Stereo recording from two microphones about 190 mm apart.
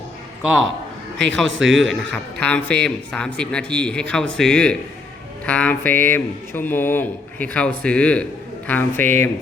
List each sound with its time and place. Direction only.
0.4 s a man's voice: centre (ahead or behind)
1.5 s speech: 80° right
1.7 s a man's voice: centre (ahead or behind)
5.5 s mantra: 5° left (ahead or behind)
7.8 s a man's voice: 5° left (ahead or behind)
8.6 s mantra: 10° left (ahead or behind)